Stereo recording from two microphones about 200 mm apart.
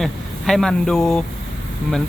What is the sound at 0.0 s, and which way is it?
Speech, centre (ahead or behind).